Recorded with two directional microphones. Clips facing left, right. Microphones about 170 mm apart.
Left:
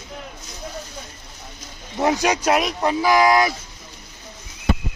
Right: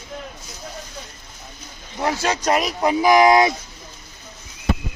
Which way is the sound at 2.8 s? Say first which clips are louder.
Right 6 dB; 15° right (ahead or behind).